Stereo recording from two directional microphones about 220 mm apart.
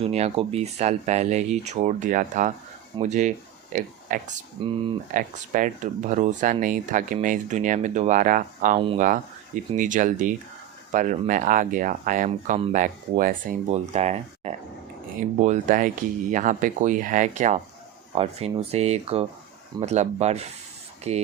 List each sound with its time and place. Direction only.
0.0 s speech: 25° right (ahead or behind)
4.6 s speech: 25° right (ahead or behind)
5.1 s speech: 35° right (ahead or behind)